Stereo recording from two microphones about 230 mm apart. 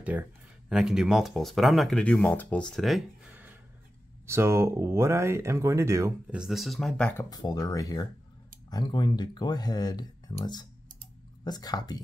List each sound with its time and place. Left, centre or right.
0.1 s speech: centre
4.3 s speech: centre
6.4 s speech: centre